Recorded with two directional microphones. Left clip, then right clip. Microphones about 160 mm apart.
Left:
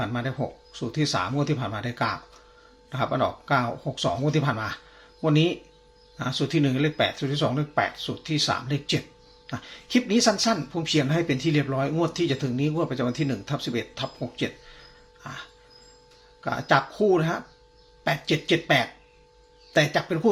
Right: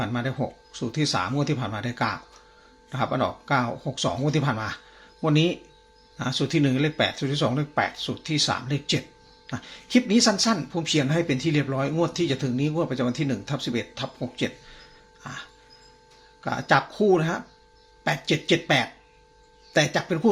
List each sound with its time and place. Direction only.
0.0 s speech: 10° right (ahead or behind)
15.2 s dog: 5° right (ahead or behind)
16.4 s speech: 5° right (ahead or behind)